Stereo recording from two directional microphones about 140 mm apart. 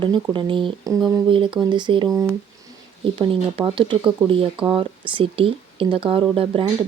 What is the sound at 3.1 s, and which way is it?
Speech, 40° right (ahead or behind).